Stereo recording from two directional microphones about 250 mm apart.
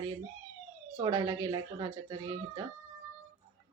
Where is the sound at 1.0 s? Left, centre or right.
Centre.